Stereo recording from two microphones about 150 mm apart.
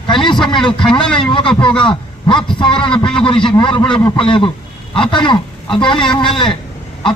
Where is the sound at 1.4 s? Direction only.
5° left (ahead or behind).